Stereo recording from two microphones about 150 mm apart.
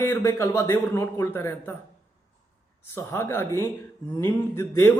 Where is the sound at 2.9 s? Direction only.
15° left (ahead or behind).